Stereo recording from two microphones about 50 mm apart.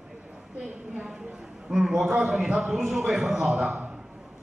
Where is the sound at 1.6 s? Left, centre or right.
Centre.